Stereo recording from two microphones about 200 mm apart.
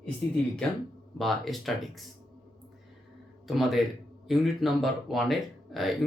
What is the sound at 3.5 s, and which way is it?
Speech, centre (ahead or behind).